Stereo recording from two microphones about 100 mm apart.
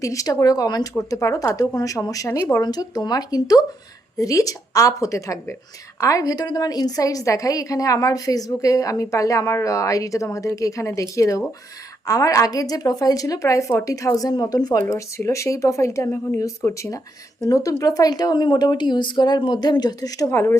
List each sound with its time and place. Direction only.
0.0 s a woman's voice: 35° left (ahead or behind)